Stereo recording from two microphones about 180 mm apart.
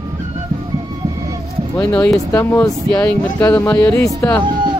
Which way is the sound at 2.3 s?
15° left (ahead or behind).